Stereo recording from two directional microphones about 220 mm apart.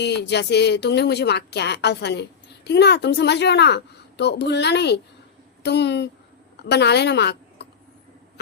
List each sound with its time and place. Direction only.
0.0 s a woman's voice: 50° left (ahead or behind)